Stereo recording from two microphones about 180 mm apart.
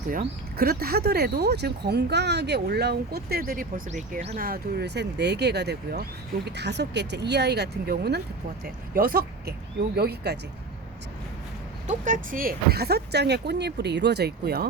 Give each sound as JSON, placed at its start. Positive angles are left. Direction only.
{"t": 0.1, "sound": "speech", "side_deg": -60}
{"t": 8.6, "sound": "speech", "side_deg": -55}
{"t": 11.9, "sound": "speech", "side_deg": -45}